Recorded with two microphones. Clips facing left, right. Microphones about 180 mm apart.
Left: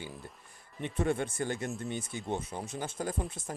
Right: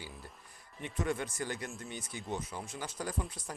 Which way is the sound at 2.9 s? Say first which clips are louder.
Left 2 dB; 50° left (ahead or behind).